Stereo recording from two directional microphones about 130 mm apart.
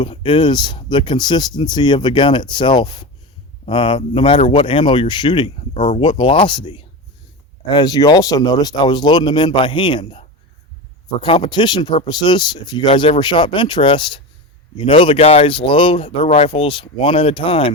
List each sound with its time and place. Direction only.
0.0 s speech: 40° left (ahead or behind)
5.7 s speech: 60° left (ahead or behind)
6.0 s speech: 45° left (ahead or behind)
11.2 s speech: 40° left (ahead or behind)